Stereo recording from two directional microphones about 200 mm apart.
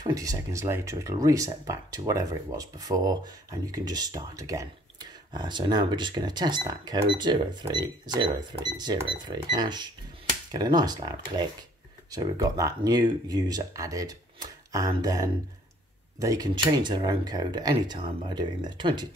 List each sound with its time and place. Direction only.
0.0 s speech: 20° right (ahead or behind)